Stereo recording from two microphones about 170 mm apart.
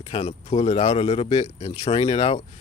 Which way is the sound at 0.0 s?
35° left (ahead or behind).